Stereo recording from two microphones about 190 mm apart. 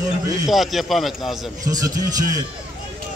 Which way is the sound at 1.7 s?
20° right (ahead or behind).